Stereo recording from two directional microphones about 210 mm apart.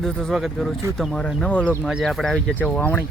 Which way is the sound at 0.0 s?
Centre (ahead or behind).